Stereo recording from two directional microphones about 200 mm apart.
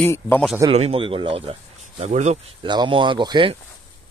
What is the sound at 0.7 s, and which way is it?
Speech, 30° right (ahead or behind).